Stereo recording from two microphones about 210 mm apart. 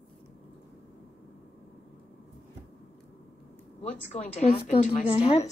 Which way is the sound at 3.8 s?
35° left (ahead or behind).